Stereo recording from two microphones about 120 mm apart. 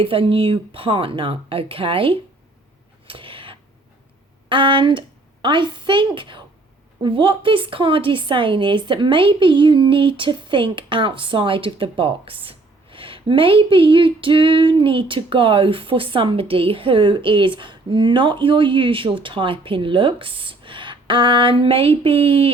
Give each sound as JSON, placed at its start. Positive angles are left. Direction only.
{"t": 0.0, "sound": "a woman's voice", "side_deg": -50}
{"t": 3.1, "sound": "a sound", "side_deg": -45}
{"t": 4.4, "sound": "a woman's voice", "side_deg": -45}